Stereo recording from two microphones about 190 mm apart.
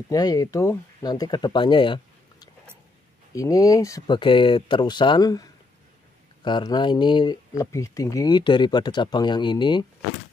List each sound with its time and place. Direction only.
0.1 s speech: 20° left (ahead or behind)
3.3 s speech: 20° left (ahead or behind)